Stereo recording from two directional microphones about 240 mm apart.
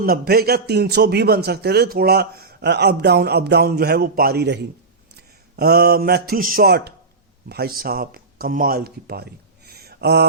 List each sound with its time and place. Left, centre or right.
0.0 s a man's voice: right